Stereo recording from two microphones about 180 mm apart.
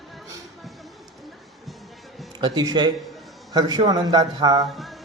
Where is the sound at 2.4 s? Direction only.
20° right (ahead or behind).